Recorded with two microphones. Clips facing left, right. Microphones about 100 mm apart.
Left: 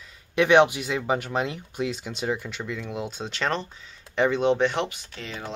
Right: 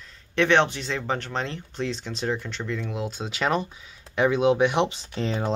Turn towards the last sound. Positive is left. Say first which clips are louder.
# right 9 dB
turn(degrees=-30)  # may be behind; listen again after turning